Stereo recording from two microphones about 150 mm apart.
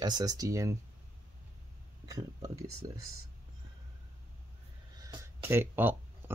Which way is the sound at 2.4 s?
25° right (ahead or behind).